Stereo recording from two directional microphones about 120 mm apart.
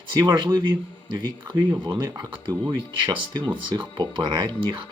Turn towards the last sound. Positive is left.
turn(degrees=-40)  # may be behind; listen again after turning